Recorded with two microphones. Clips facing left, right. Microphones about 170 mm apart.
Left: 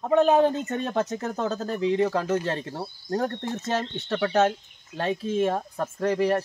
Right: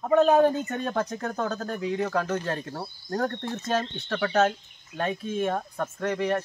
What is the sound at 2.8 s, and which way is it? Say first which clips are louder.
Speech: left 2 dB; 15° left (ahead or behind).